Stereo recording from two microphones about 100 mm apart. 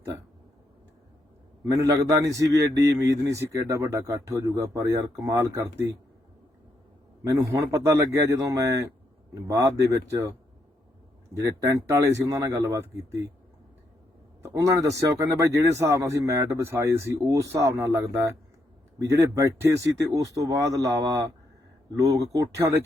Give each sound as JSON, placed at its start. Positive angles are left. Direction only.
{"t": 1.6, "sound": "a man's voice", "side_deg": -35}
{"t": 7.3, "sound": "a man's voice", "side_deg": -35}
{"t": 11.4, "sound": "a man's voice", "side_deg": -35}
{"t": 14.4, "sound": "a man's voice", "side_deg": -35}